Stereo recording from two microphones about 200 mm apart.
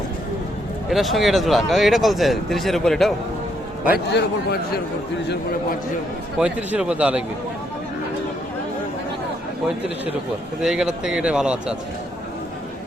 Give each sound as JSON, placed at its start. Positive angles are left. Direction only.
{"t": 0.9, "sound": "speech", "side_deg": 0}
{"t": 3.9, "sound": "a man's voice", "side_deg": 60}
{"t": 6.4, "sound": "speech", "side_deg": -5}
{"t": 10.6, "sound": "speech", "side_deg": 0}